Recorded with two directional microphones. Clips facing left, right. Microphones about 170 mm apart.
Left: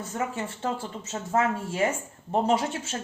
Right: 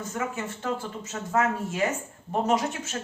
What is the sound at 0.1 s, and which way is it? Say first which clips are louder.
A woman's voice: left 1 dB; 30° left (ahead or behind).